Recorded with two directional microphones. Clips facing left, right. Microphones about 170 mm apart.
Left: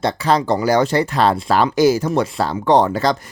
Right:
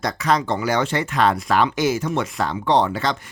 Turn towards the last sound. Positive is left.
turn(degrees=40)  # may be behind; listen again after turning